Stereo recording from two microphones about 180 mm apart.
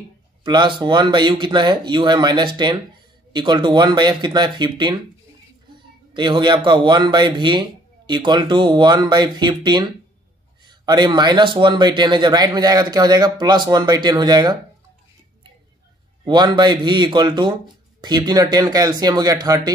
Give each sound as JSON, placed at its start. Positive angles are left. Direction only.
{"t": 0.4, "sound": "speech", "side_deg": -25}
{"t": 6.1, "sound": "speech", "side_deg": -25}
{"t": 16.3, "sound": "speech", "side_deg": -25}